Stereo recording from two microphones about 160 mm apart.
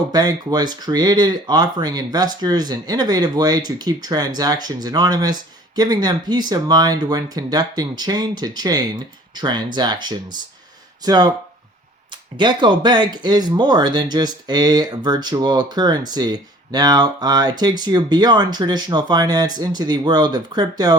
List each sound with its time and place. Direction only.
0.1 s speech: 25° right (ahead or behind)
12.4 s speech: 30° right (ahead or behind)